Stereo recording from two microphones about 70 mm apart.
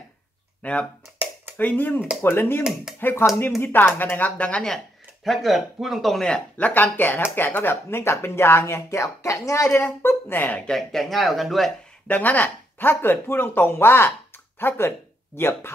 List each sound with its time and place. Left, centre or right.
0.6 s speech: centre
5.2 s speech: centre
6.6 s speech: left
10.0 s speech: left
10.7 s speech: centre
12.1 s speech: left